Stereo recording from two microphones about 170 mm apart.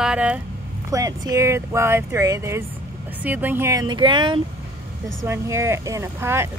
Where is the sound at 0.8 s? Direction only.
20° right (ahead or behind).